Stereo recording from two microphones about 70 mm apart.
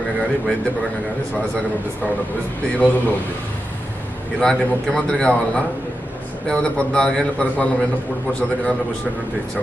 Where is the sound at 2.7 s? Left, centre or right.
Left.